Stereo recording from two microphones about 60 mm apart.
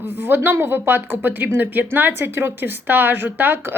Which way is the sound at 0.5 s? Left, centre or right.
Right.